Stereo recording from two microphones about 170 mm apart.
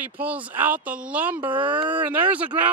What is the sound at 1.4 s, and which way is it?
Speech, 30° right (ahead or behind).